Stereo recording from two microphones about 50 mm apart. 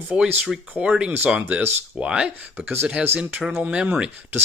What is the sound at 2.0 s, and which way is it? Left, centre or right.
Speech, centre.